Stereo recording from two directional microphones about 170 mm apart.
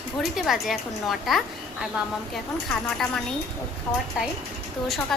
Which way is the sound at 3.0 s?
5° left (ahead or behind).